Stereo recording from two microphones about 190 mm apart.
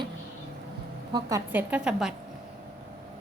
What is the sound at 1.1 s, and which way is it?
A woman's voice, 20° right (ahead or behind).